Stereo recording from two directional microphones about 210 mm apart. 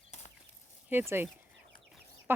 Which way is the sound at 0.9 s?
10° right (ahead or behind).